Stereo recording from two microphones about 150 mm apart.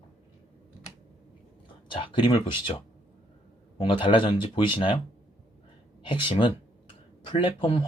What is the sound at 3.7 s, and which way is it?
Speech, 35° left (ahead or behind).